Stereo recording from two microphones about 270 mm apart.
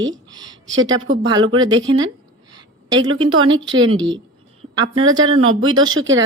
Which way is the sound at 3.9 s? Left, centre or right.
Right.